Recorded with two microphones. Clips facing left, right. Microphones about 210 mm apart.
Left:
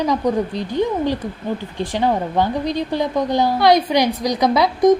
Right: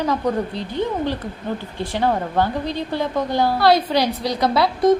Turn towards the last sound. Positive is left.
turn(degrees=15)  # may be behind; listen again after turning